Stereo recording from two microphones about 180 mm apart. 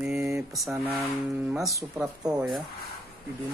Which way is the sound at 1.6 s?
15° right (ahead or behind).